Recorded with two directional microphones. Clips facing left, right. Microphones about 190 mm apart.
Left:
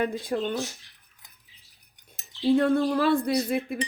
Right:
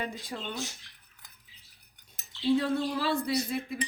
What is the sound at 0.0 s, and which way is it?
Cutlery, 55° left (ahead or behind).